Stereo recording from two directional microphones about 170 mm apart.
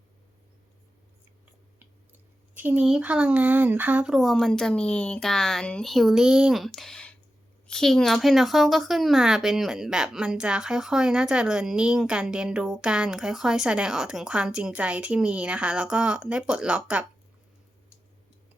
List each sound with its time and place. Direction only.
2.6 s speech: 10° right (ahead or behind)